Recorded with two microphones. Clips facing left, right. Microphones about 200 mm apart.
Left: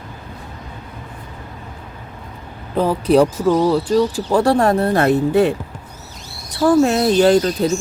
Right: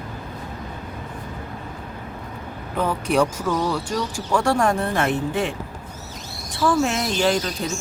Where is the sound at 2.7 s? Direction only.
35° left (ahead or behind).